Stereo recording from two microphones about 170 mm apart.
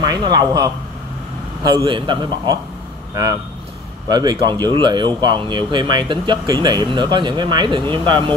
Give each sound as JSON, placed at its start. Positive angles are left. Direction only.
{"t": 0.0, "sound": "speech", "side_deg": -25}
{"t": 1.9, "sound": "speech", "side_deg": -30}
{"t": 4.1, "sound": "speech", "side_deg": -25}